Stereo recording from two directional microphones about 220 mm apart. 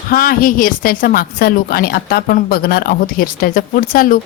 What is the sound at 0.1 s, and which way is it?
A woman's voice, 40° left (ahead or behind).